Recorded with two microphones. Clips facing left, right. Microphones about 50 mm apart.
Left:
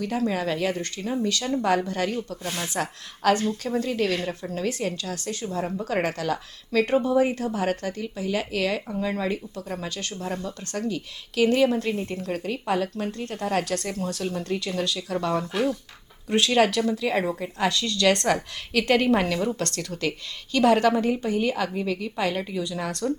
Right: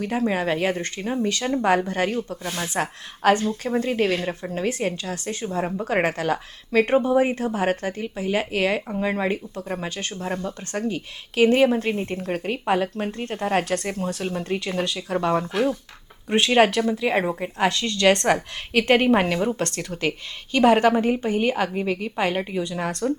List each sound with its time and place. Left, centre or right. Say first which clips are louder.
0.0 s speech: right 2 dB; right